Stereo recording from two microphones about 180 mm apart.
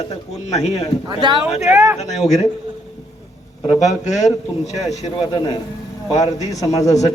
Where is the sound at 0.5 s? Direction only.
40° left (ahead or behind).